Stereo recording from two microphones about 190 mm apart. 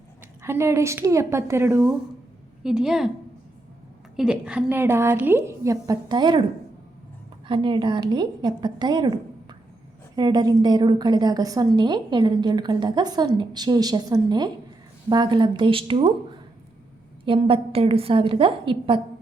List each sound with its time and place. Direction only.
0.4 s a woman's voice: 15° right (ahead or behind)
4.2 s a woman's voice: 5° right (ahead or behind); by 6.4 s 25° right (ahead or behind)
7.4 s a woman's voice: 25° right (ahead or behind)
17.2 s a woman's voice: 30° right (ahead or behind)